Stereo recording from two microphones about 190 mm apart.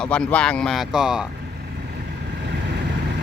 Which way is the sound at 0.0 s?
5° left (ahead or behind).